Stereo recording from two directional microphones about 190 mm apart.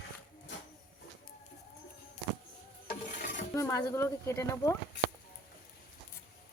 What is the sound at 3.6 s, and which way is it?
Speech, 15° left (ahead or behind).